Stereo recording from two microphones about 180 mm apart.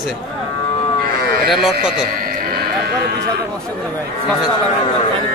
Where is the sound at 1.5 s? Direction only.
Centre (ahead or behind).